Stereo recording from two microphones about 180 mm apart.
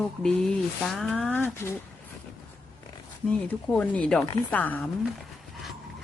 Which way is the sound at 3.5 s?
10° left (ahead or behind).